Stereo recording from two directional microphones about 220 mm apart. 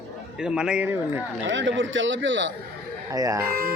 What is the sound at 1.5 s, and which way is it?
A man's voice, 55° right (ahead or behind).